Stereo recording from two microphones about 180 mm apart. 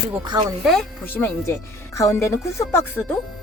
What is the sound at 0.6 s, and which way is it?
A woman's voice, 5° left (ahead or behind).